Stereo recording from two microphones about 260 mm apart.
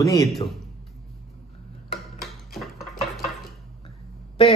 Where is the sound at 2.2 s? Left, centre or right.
Centre.